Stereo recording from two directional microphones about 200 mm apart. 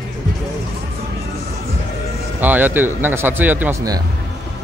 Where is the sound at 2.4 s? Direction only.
10° right (ahead or behind).